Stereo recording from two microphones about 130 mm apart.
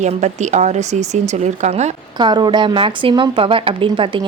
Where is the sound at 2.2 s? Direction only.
35° right (ahead or behind).